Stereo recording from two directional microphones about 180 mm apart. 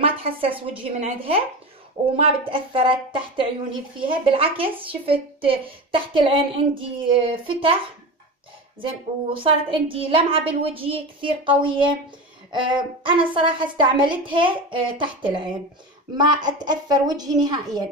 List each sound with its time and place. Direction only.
0.0 s a sound: 30° right (ahead or behind)
0.6 s a woman's voice: 30° right (ahead or behind)
8.8 s a woman's voice: 30° right (ahead or behind)